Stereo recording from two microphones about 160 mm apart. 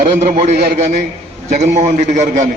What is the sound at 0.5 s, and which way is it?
Speech, 75° right (ahead or behind).